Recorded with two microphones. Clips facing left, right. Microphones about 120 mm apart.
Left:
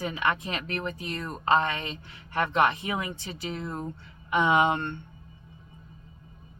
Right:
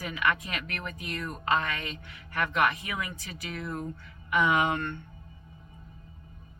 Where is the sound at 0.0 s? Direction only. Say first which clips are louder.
Left 1 dB; 30° left (ahead or behind).